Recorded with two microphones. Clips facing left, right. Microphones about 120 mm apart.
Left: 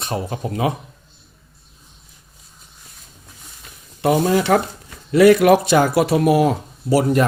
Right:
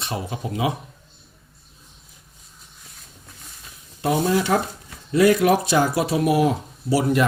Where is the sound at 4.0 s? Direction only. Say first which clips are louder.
Left 4 dB; 75° left (ahead or behind).